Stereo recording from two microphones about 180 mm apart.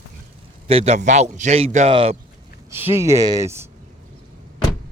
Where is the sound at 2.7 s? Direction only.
15° right (ahead or behind).